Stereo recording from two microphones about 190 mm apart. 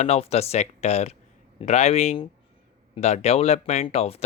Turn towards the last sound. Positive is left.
turn(degrees=30)  # may be behind; listen again after turning